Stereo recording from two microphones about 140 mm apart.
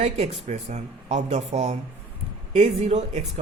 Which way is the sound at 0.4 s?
55° right (ahead or behind).